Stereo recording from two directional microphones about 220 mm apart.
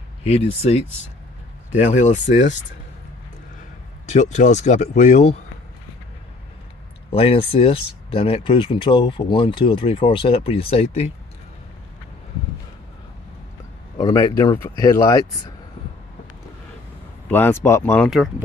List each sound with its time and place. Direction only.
0.2 s speech: 30° left (ahead or behind)
2.0 s speech: 35° left (ahead or behind)
4.0 s speech: 30° left (ahead or behind)
7.1 s speech: 25° left (ahead or behind)
13.9 s speech: 15° left (ahead or behind)
17.3 s speech: 10° left (ahead or behind)